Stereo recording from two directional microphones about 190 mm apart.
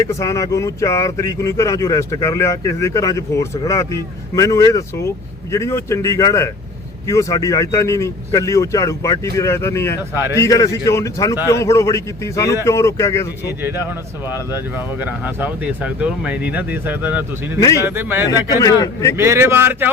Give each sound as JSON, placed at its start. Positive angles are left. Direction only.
{"t": 0.0, "sound": "speech", "side_deg": 15}
{"t": 13.6, "sound": "speech", "side_deg": -10}
{"t": 15.0, "sound": "speech", "side_deg": -10}
{"t": 17.6, "sound": "speech", "side_deg": 15}
{"t": 17.8, "sound": "speech", "side_deg": -10}
{"t": 18.3, "sound": "speech", "side_deg": 20}
{"t": 19.1, "sound": "speech", "side_deg": -15}